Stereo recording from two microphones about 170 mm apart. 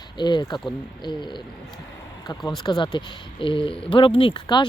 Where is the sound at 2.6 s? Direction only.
25° left (ahead or behind).